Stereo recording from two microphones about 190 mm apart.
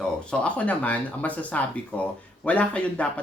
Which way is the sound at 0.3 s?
5° left (ahead or behind).